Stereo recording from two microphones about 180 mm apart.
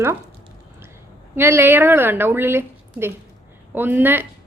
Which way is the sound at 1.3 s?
15° right (ahead or behind).